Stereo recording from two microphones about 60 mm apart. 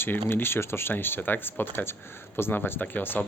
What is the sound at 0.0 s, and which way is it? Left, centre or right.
Speech, left.